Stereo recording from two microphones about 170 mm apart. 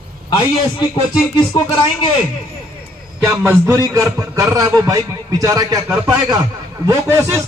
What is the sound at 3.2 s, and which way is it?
A man's voice, 15° right (ahead or behind).